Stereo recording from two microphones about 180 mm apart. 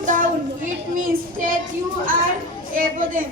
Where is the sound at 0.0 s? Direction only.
45° right (ahead or behind).